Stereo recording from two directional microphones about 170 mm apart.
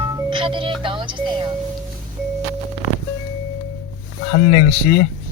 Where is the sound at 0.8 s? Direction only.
30° right (ahead or behind).